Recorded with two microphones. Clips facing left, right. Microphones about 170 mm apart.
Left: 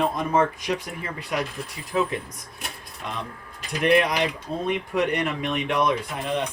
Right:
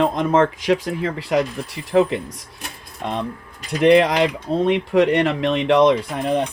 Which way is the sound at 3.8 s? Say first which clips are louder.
Right 7 dB; 90° right.